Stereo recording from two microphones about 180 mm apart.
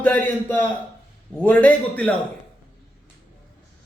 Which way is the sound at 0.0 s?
10° left (ahead or behind).